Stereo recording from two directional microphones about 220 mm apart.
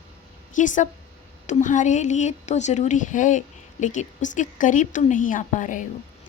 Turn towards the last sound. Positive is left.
turn(degrees=35)  # may be behind; listen again after turning